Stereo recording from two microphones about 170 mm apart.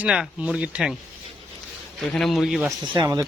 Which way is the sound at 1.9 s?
Centre (ahead or behind).